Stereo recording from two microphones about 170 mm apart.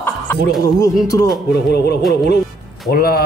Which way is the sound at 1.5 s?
70° left (ahead or behind).